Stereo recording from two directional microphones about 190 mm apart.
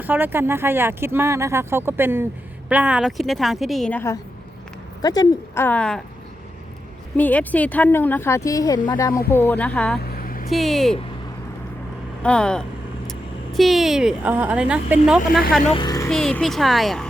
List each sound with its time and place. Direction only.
0.0 s a woman's voice: 10° right (ahead or behind); by 6.0 s 5° left (ahead or behind)
7.2 s speech: 10° left (ahead or behind)
10.0 s vehicle: 50° left (ahead or behind)
10.5 s a woman's voice: centre (ahead or behind)
12.2 s a woman's voice: 5° left (ahead or behind)
15.7 s a child's voice: 20° left (ahead or behind)
16.0 s a woman's voice: 5° left (ahead or behind)